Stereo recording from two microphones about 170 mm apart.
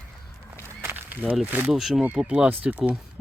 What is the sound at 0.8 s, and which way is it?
Speech, 15° right (ahead or behind).